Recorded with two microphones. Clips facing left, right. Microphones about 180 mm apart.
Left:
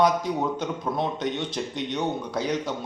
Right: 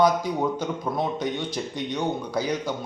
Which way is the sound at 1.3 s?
25° left (ahead or behind).